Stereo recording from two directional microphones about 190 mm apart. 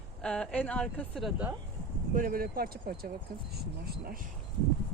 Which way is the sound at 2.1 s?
50° right (ahead or behind).